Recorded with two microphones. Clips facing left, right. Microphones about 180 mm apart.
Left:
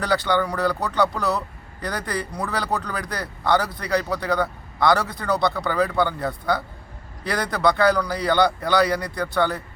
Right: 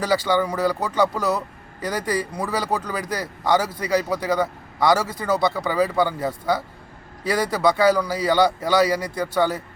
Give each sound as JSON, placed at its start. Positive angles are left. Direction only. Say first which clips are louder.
{"t": 0.0, "sound": "speech", "louder": "right 1 dB", "side_deg": -10}